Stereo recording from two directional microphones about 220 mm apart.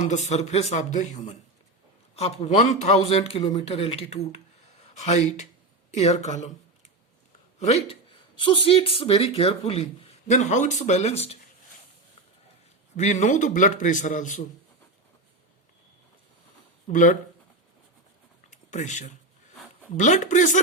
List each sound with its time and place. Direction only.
0.0 s a man's voice: 30° left (ahead or behind)
2.1 s a man's voice: 30° left (ahead or behind)
7.6 s speech: 30° left (ahead or behind)
13.0 s a man's voice: 30° left (ahead or behind)
16.9 s a man's voice: 35° left (ahead or behind)
18.5 s a sound: 35° left (ahead or behind)
19.9 s a man's voice: 35° left (ahead or behind)